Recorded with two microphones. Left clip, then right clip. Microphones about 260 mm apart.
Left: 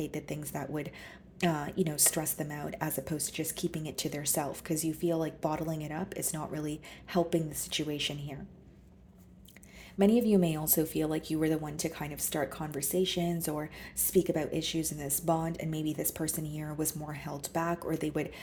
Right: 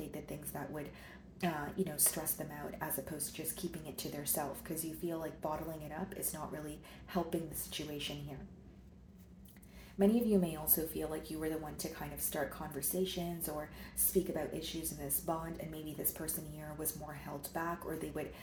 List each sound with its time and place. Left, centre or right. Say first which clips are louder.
0.1 s a woman's voice: left 7 dB; left
10.0 s a woman's voice: left 5 dB; left